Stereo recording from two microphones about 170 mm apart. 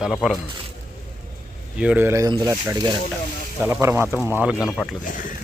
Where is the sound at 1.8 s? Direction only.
10° right (ahead or behind).